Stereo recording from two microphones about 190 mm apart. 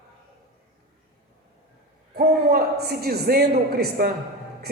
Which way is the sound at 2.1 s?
55° right (ahead or behind).